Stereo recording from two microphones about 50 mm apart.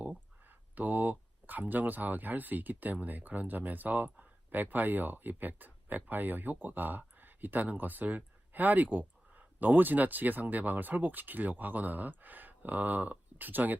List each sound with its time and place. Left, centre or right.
0.0 s speech: right